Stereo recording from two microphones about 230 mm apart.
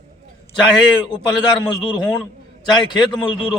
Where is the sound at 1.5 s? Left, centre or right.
Centre.